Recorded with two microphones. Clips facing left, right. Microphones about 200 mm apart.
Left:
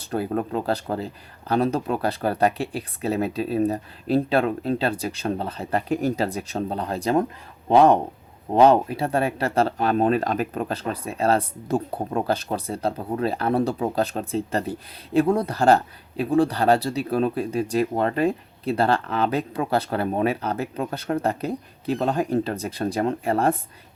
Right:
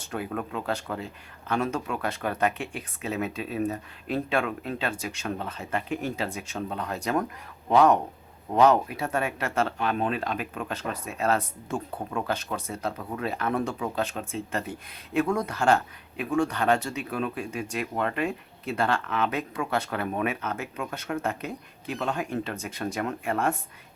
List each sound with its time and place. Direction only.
0.0 s speech: 35° left (ahead or behind)